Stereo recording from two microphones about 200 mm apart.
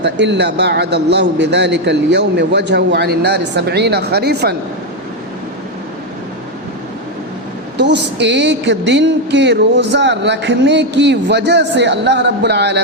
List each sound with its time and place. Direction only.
0.0 s a woman's voice: 60° right (ahead or behind)
7.8 s a woman's voice: 60° right (ahead or behind)